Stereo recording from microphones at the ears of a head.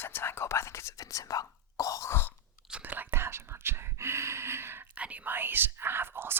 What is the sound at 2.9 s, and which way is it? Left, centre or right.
Speech, right.